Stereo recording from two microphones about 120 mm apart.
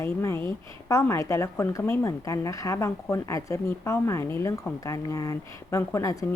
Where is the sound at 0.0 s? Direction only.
20° left (ahead or behind).